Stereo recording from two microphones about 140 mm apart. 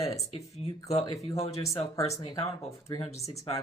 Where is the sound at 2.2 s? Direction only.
35° left (ahead or behind).